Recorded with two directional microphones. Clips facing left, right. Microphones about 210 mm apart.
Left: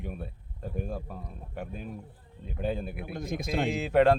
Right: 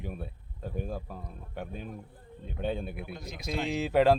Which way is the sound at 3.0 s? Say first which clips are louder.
Left 5 dB; 50° left (ahead or behind).